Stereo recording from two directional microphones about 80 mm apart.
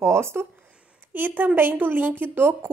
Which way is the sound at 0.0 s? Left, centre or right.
Right.